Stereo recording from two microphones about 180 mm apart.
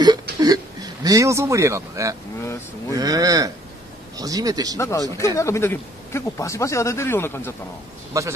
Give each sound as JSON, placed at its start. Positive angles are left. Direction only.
{"t": 0.0, "sound": "a sound", "side_deg": -20}
{"t": 2.9, "sound": "speech", "side_deg": -20}
{"t": 4.7, "sound": "speech", "side_deg": 15}
{"t": 8.2, "sound": "a man's voice", "side_deg": -15}